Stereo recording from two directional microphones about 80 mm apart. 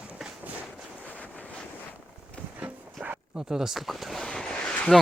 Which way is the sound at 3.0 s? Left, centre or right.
Centre.